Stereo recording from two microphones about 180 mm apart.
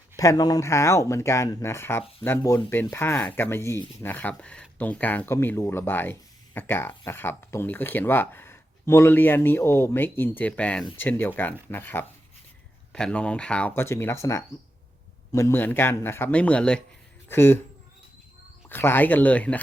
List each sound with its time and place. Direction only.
0.2 s speech: 20° left (ahead or behind)
18.7 s speech: 10° left (ahead or behind)